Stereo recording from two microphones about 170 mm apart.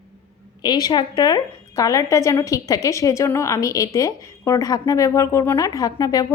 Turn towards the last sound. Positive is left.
turn(degrees=20)  # may be behind; listen again after turning